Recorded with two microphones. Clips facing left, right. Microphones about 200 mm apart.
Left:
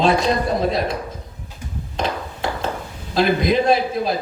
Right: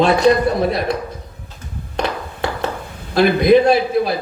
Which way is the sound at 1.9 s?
50° right (ahead or behind).